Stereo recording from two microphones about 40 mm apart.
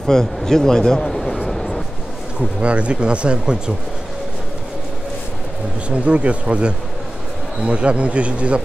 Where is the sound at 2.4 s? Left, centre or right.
Right.